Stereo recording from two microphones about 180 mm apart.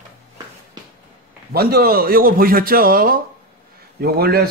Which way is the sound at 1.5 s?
55° right (ahead or behind).